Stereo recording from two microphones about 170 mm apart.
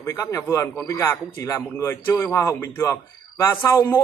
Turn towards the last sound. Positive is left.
turn(degrees=15)  # may be behind; listen again after turning